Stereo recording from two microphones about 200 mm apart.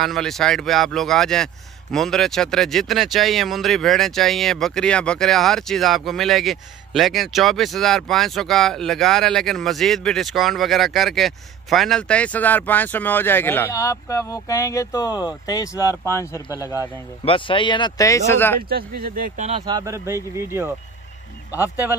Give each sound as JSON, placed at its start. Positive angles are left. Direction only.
{"t": 0.0, "sound": "speech", "side_deg": 0}
{"t": 17.2, "sound": "speech", "side_deg": 25}
{"t": 18.7, "sound": "speech", "side_deg": -50}
{"t": 19.6, "sound": "speech", "side_deg": -20}